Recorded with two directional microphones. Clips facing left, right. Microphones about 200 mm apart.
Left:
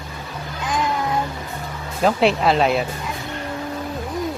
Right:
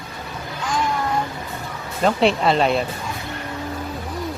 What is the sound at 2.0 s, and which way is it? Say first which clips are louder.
Speech: left 1 dB; centre (ahead or behind).